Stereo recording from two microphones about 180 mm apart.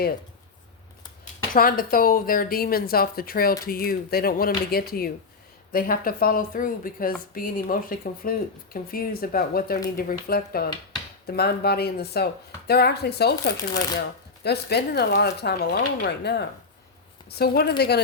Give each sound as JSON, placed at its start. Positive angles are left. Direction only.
{"t": 1.5, "sound": "speech", "side_deg": 55}
{"t": 14.4, "sound": "speech", "side_deg": 65}